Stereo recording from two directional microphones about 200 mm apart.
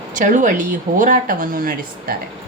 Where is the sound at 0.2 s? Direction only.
40° right (ahead or behind).